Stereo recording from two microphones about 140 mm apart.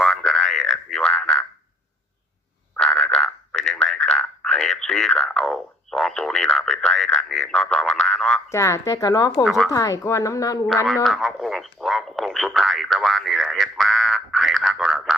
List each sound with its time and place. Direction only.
0.0 s frog: 5° left (ahead or behind)
2.7 s frog: 5° left (ahead or behind)
8.4 s speech: 20° left (ahead or behind)
9.4 s speech: centre (ahead or behind)
9.6 s speech: 25° left (ahead or behind)
10.8 s radio: centre (ahead or behind)